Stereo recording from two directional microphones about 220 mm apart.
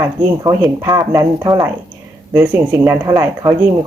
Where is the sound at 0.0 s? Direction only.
15° right (ahead or behind).